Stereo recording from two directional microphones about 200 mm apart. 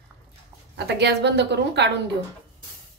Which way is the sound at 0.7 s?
55° right (ahead or behind).